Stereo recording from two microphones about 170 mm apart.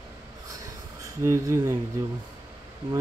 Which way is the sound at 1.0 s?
15° right (ahead or behind).